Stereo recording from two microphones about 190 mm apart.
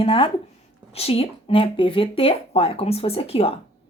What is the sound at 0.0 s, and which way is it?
Speech, 30° left (ahead or behind).